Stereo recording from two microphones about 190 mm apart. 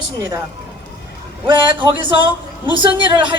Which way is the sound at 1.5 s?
25° right (ahead or behind).